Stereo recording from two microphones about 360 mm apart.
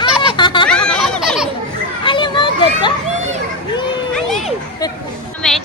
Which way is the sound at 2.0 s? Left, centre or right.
Centre.